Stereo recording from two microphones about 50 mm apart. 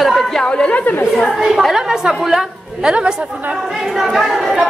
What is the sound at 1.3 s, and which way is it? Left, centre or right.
A woman's voice, centre.